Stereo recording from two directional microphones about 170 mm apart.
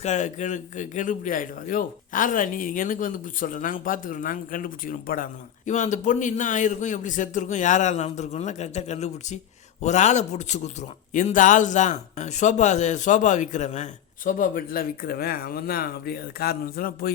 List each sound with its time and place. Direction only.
0.0 s speech: 45° left (ahead or behind); by 17.1 s 60° left (ahead or behind)